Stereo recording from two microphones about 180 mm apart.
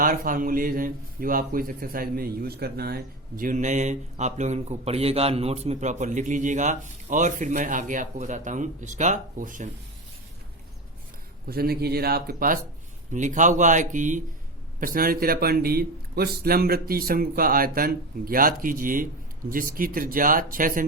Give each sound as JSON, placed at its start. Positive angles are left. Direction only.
{"t": 0.0, "sound": "speech", "side_deg": -50}
{"t": 11.4, "sound": "a man's voice", "side_deg": -60}